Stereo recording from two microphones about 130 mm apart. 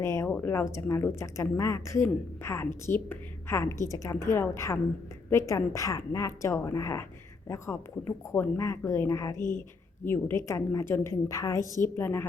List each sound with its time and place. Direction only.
0.0 s speech: 20° left (ahead or behind)